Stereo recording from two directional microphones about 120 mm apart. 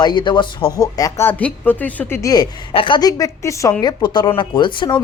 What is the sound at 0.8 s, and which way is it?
Speech, 30° left (ahead or behind).